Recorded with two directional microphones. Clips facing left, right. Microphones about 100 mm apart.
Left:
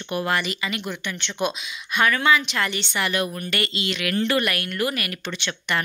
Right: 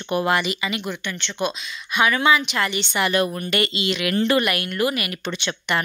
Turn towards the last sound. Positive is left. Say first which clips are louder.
# right 3 dB
turn(degrees=-15)  # may be behind; listen again after turning